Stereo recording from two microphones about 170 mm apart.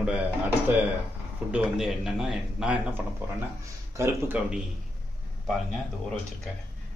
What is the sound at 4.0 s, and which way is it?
Speech, 15° right (ahead or behind).